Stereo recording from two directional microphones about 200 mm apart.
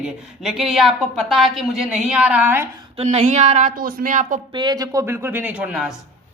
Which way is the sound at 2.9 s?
30° right (ahead or behind).